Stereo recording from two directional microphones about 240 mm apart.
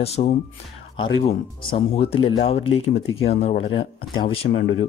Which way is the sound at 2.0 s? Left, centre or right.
Left.